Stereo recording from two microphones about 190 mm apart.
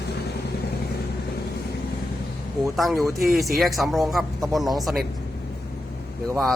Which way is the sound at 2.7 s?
Centre (ahead or behind).